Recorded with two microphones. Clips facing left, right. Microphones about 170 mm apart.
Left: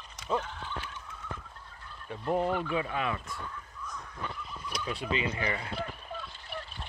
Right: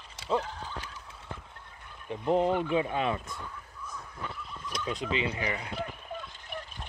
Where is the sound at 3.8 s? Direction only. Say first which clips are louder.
Even; 5° right (ahead or behind).